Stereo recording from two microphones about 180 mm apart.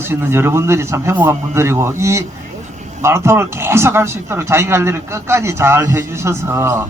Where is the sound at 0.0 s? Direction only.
10° right (ahead or behind).